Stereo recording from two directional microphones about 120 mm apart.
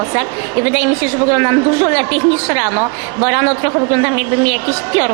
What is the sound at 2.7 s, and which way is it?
Speech, 30° right (ahead or behind).